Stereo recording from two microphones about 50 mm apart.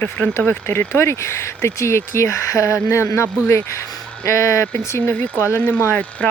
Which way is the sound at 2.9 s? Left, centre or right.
Left.